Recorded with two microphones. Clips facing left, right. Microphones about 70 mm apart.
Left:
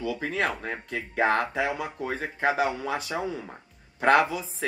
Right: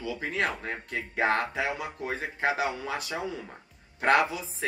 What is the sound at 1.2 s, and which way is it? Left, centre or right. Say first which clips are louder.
Speech: left 3 dB; left.